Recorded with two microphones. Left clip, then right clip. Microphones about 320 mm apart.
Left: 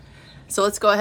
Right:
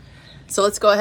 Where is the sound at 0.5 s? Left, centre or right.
Centre.